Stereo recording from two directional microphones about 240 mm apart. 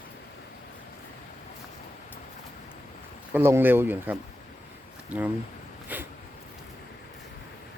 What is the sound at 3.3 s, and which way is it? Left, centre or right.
Speech, centre.